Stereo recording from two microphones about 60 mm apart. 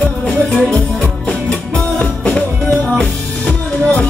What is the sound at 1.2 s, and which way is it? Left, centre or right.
Music, centre.